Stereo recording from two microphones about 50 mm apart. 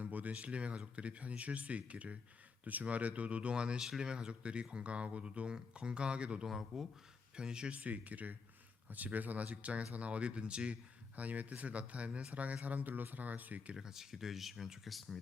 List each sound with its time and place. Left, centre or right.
0.0 s speech: right
3.8 s speech: centre
6.5 s speech: centre
7.3 s speech: centre
7.7 s speech: right
13.7 s speech: centre